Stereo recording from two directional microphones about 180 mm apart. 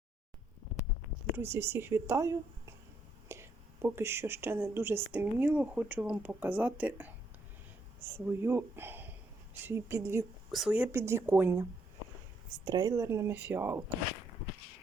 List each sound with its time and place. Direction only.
1.4 s speech: 15° right (ahead or behind)
10.5 s speech: 5° right (ahead or behind)
12.6 s speech: 20° right (ahead or behind)